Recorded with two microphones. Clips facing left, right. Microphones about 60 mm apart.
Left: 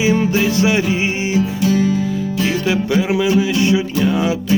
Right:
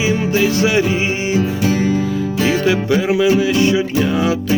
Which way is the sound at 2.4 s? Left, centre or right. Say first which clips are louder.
Right 3 dB; right.